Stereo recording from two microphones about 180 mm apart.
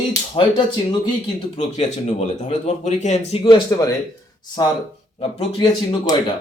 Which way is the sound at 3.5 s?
20° left (ahead or behind).